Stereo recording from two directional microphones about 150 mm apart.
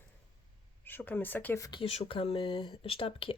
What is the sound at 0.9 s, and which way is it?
Speech, 15° left (ahead or behind).